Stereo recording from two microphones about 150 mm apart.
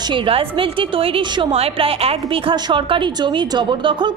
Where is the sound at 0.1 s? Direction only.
35° right (ahead or behind).